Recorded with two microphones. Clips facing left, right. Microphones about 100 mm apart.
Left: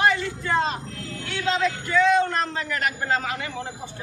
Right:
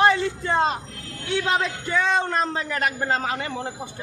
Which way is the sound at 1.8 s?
30° right (ahead or behind).